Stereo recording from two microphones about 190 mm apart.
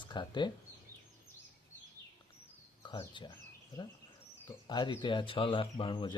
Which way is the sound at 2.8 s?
25° left (ahead or behind).